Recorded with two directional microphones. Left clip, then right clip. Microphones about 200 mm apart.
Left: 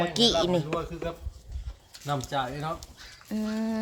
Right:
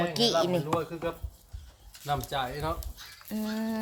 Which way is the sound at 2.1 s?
35° right (ahead or behind).